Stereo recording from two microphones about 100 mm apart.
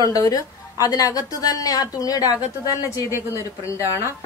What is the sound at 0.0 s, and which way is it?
A woman's voice, 35° left (ahead or behind).